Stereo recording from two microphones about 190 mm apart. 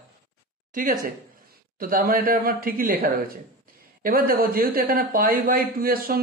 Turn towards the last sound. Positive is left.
turn(degrees=-50)  # may be behind; listen again after turning